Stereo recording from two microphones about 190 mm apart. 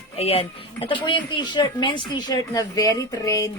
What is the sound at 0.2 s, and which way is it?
Speech, 30° left (ahead or behind).